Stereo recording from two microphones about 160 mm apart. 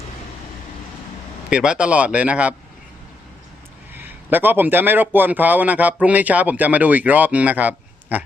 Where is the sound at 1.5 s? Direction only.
5° right (ahead or behind).